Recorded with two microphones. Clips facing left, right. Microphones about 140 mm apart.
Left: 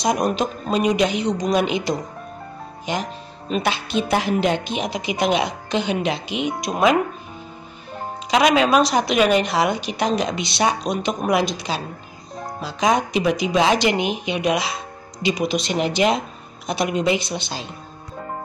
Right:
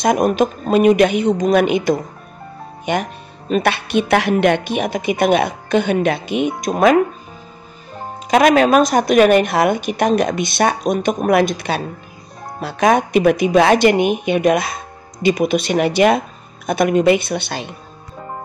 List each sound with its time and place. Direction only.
0.0 s speech: 55° right (ahead or behind)
8.3 s a woman's voice: 50° right (ahead or behind)